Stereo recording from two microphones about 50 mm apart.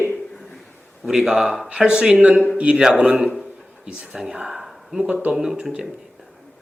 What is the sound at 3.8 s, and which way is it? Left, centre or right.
Speech, centre.